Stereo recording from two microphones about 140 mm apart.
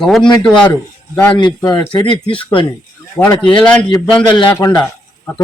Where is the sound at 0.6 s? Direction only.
25° left (ahead or behind).